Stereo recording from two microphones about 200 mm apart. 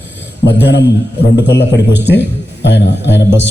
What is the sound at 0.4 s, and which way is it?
A man's voice, 60° left (ahead or behind).